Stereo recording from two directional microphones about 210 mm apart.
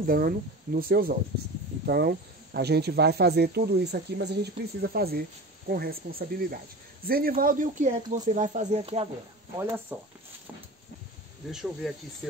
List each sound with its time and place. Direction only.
0.0 s speech: 45° right (ahead or behind)
9.6 s speech: 15° right (ahead or behind)
11.8 s speech: centre (ahead or behind)